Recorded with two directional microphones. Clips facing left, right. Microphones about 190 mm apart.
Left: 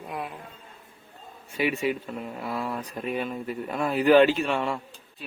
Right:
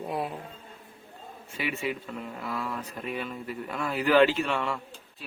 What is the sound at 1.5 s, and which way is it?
Speech, 15° left (ahead or behind).